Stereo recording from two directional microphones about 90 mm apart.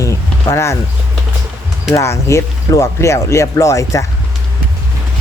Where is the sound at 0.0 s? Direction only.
35° left (ahead or behind).